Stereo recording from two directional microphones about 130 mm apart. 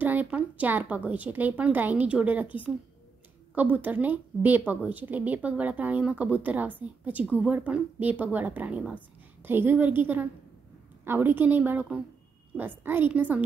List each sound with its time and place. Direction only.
0.0 s a woman's voice: 15° right (ahead or behind)